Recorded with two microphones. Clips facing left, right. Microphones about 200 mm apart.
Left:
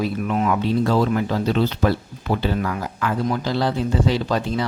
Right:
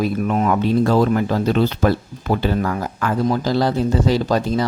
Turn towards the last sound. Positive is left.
turn(degrees=-40)  # may be behind; listen again after turning